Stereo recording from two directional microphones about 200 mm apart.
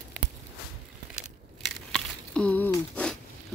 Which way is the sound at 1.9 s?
5° left (ahead or behind).